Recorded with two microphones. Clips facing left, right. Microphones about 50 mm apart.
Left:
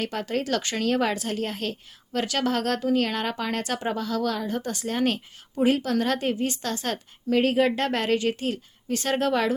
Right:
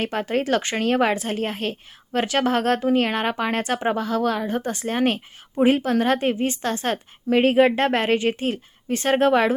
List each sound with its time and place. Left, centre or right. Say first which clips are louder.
0.0 s a woman's voice: right 4 dB; right